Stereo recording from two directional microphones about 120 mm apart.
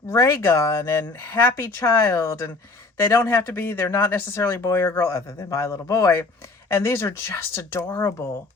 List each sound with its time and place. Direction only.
0.1 s speech: 25° left (ahead or behind)